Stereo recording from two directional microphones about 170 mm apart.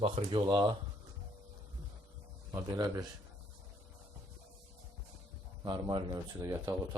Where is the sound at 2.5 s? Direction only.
20° right (ahead or behind).